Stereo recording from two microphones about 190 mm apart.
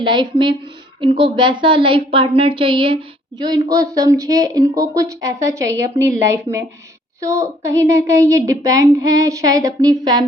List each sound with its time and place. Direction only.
0.0 s a woman's voice: 25° right (ahead or behind)